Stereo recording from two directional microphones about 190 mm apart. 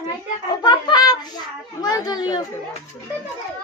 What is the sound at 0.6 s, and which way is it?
A woman's voice, 20° left (ahead or behind).